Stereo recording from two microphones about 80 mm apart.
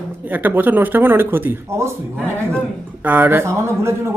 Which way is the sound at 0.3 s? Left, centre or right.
Right.